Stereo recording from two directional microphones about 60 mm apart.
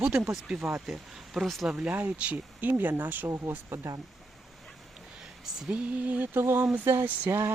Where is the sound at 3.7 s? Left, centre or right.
Right.